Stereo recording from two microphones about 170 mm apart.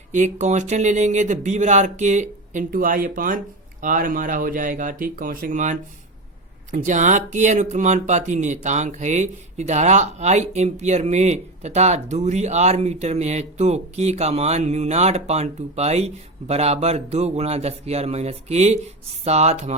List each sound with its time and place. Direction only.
0.1 s speech: 45° right (ahead or behind)